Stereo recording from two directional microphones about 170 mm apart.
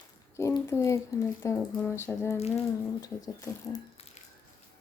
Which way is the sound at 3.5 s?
20° left (ahead or behind).